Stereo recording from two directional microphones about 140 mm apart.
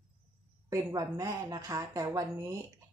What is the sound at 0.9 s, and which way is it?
Speech, 25° right (ahead or behind).